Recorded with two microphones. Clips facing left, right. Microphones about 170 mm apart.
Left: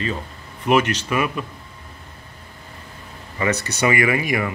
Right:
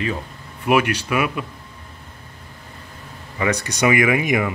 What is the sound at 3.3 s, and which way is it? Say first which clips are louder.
Speech: right 1 dB; 10° right (ahead or behind).